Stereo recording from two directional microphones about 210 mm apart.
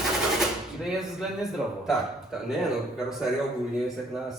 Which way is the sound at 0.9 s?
Centre (ahead or behind).